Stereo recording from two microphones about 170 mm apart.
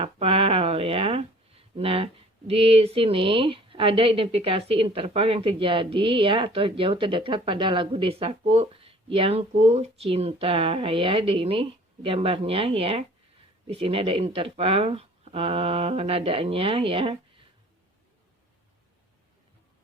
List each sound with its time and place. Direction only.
0.0 s speech: 35° right (ahead or behind)